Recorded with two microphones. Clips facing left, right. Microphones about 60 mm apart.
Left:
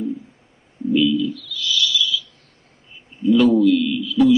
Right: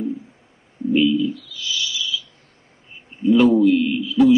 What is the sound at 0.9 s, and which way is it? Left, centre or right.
Speech, right.